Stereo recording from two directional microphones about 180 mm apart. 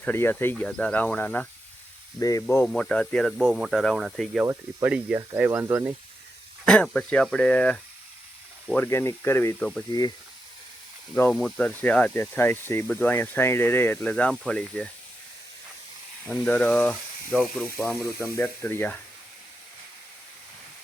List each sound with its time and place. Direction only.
0.0 s speech: 10° left (ahead or behind)
2.6 s speech: 5° left (ahead or behind); by 5.9 s 15° right (ahead or behind)
6.7 s speech: 5° left (ahead or behind)
11.1 s speech: 5° left (ahead or behind)
16.2 s speech: 5° left (ahead or behind)